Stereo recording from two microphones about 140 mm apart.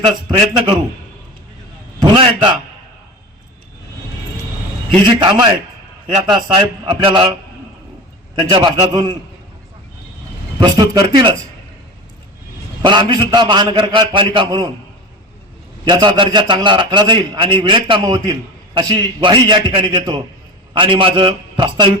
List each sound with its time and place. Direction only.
2.0 s a man's voice: 35° right (ahead or behind)
5.0 s a man's voice: 35° right (ahead or behind)
8.4 s a man's voice: 30° right (ahead or behind)
10.6 s a man's voice: 30° right (ahead or behind)
12.8 s a man's voice: 35° right (ahead or behind)
15.8 s a man's voice: 35° right (ahead or behind)